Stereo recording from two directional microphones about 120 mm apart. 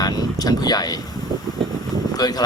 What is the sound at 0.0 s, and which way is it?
Vehicle, 35° left (ahead or behind).